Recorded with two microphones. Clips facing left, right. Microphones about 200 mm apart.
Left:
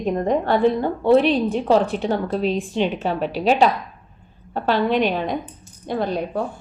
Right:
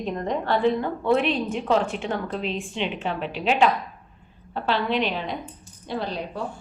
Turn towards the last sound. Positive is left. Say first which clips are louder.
# left 6 dB
turn(degrees=50)  # may be behind; listen again after turning